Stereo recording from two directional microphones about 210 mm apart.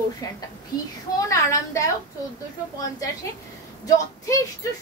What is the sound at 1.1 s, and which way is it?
Speech, 15° left (ahead or behind).